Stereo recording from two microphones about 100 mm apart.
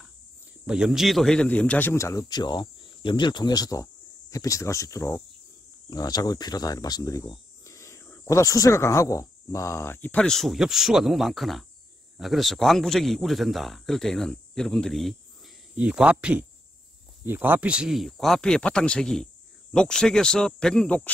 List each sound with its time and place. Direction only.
0.7 s a man's voice: 5° right (ahead or behind); by 2.0 s 15° left (ahead or behind)
2.0 s speech: 30° left (ahead or behind)
2.2 s speech: 45° left (ahead or behind)
5.9 s speech: 40° left (ahead or behind); by 10.2 s 20° left (ahead or behind)
10.2 s a man's voice: 5° left (ahead or behind)
15.7 s a man's voice: 10° right (ahead or behind); by 21.1 s 10° left (ahead or behind)